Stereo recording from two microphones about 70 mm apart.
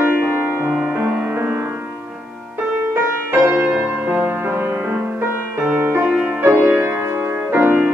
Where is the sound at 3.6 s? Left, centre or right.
Centre.